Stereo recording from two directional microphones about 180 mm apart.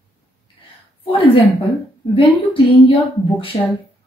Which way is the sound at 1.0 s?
30° left (ahead or behind).